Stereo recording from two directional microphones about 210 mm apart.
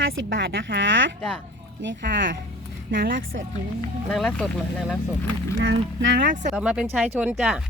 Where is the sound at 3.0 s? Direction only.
45° right (ahead or behind).